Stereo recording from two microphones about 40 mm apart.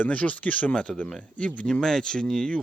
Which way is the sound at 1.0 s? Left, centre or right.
Centre.